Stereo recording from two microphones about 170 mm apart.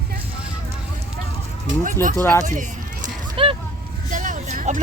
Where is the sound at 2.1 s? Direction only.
15° left (ahead or behind).